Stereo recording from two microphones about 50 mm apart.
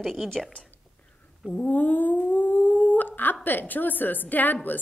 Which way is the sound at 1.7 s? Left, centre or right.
Left.